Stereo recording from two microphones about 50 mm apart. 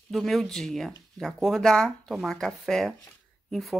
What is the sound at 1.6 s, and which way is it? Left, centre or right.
Speech, centre.